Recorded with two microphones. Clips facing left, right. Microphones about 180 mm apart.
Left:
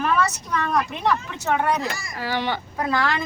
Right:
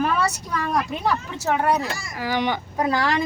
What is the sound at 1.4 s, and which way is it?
Speech, 5° right (ahead or behind).